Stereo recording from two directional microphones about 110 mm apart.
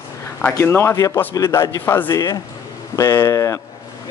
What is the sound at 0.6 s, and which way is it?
A man's voice, 20° left (ahead or behind).